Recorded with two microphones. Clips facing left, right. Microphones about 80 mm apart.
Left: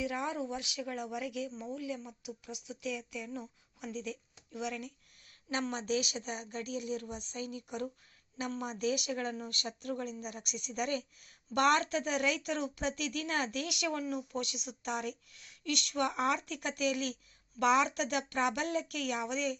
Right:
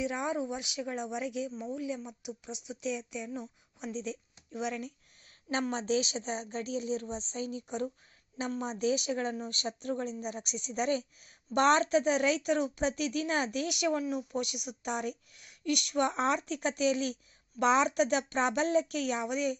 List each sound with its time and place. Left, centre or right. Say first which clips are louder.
0.0 s speech: right 3 dB; right